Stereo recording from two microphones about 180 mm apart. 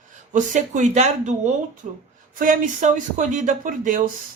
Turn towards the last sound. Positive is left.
turn(degrees=-50)  # may be behind; listen again after turning